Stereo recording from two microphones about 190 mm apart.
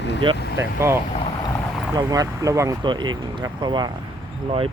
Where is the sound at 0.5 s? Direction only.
15° right (ahead or behind).